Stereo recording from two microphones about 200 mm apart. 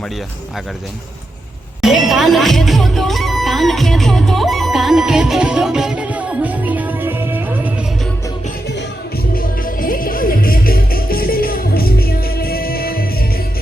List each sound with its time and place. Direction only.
1.8 s music: centre (ahead or behind)
9.3 s music: 45° left (ahead or behind)